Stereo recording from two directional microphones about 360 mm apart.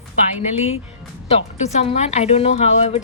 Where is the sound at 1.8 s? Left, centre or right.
Centre.